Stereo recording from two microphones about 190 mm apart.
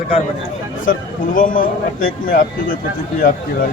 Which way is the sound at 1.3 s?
45° left (ahead or behind).